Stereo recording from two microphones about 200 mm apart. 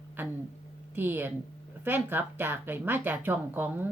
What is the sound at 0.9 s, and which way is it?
Speech, 10° right (ahead or behind).